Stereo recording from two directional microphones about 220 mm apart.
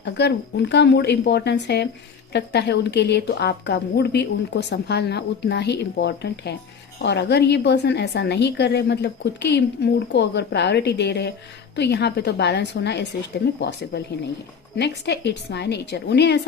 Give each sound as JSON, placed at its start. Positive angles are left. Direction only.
{"t": 0.0, "sound": "a woman's voice", "side_deg": 50}